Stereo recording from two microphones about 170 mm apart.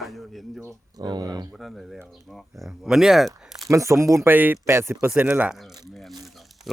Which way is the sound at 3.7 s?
15° right (ahead or behind).